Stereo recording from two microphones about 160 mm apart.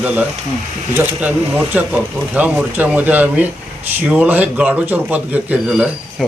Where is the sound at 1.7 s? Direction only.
10° right (ahead or behind).